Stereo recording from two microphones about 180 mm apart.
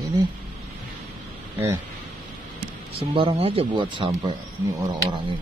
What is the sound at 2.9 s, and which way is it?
Speech, 30° right (ahead or behind).